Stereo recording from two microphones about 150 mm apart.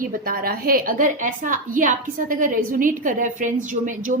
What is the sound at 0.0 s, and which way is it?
A woman's voice, 65° right (ahead or behind).